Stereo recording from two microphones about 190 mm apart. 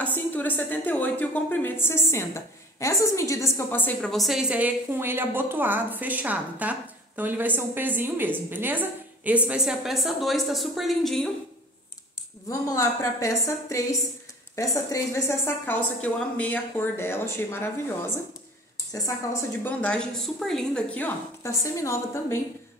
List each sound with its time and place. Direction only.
0.0 s a woman's voice: 10° left (ahead or behind)
12.4 s a woman's voice: 15° left (ahead or behind)
19.6 s a woman's voice: 5° left (ahead or behind)